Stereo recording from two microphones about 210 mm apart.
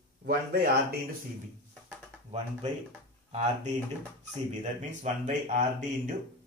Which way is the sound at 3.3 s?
30° right (ahead or behind).